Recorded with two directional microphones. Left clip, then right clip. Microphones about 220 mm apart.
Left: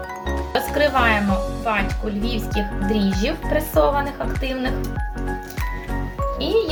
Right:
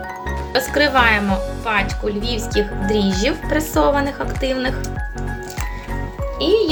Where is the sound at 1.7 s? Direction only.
45° right (ahead or behind).